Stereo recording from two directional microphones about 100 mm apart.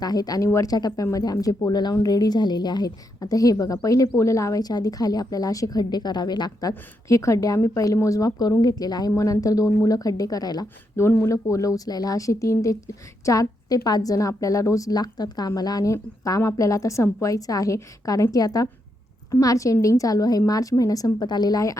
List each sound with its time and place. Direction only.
0.0 s a woman's voice: 40° left (ahead or behind)
10.9 s a woman's voice: 25° left (ahead or behind)